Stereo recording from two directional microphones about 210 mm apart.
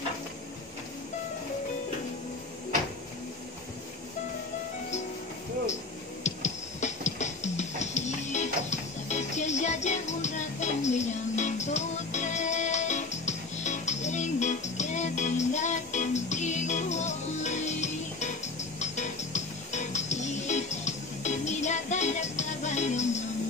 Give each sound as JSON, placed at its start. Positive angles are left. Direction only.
{"t": 6.2, "sound": "music", "side_deg": 35}